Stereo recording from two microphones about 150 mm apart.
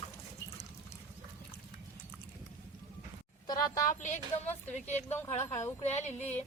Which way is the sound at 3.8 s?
55° left (ahead or behind).